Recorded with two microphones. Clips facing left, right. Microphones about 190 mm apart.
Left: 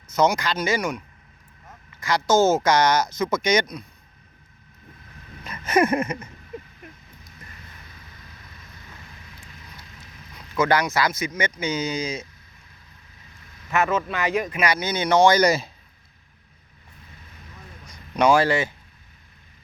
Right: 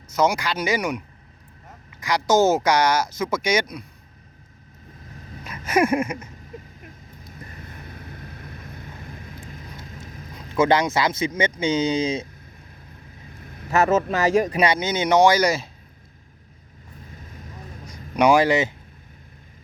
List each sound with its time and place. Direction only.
0.1 s speech: 10° right (ahead or behind)
5.5 s a sound: 5° right (ahead or behind)
7.3 s vehicle: 55° right (ahead or behind)
10.5 s speech: 25° right (ahead or behind)
13.3 s vehicle: 55° right (ahead or behind)
13.7 s a man's voice: 40° right (ahead or behind)
14.7 s speech: 20° right (ahead or behind); by 15.7 s centre (ahead or behind)
18.2 s speech: 15° right (ahead or behind)